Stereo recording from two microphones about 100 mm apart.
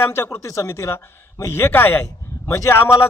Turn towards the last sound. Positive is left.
turn(degrees=25)  # may be behind; listen again after turning